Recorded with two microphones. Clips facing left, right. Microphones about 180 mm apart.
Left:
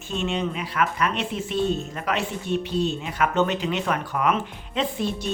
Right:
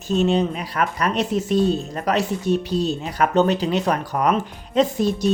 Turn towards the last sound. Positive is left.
turn(degrees=-40)  # may be behind; listen again after turning